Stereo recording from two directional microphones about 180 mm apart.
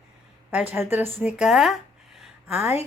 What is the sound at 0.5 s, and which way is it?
Speech, 10° right (ahead or behind).